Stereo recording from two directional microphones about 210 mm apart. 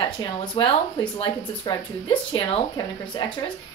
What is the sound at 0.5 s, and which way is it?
Speech, 20° left (ahead or behind).